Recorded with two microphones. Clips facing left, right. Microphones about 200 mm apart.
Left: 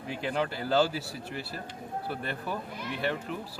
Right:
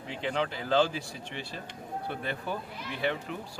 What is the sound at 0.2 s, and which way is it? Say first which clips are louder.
A man's voice: even; 5° left (ahead or behind).